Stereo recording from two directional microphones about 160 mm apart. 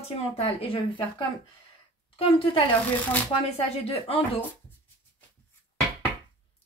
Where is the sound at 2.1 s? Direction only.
35° left (ahead or behind).